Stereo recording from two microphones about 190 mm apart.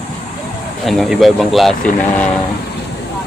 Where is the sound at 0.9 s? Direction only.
Centre (ahead or behind).